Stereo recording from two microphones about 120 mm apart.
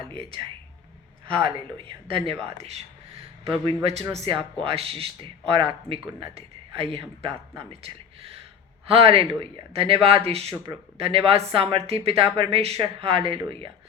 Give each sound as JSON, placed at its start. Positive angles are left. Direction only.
{"t": 0.1, "sound": "speech", "side_deg": -50}
{"t": 2.6, "sound": "speech", "side_deg": -60}
{"t": 3.4, "sound": "speech", "side_deg": -45}